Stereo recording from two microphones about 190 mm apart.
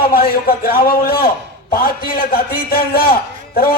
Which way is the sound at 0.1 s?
50° left (ahead or behind).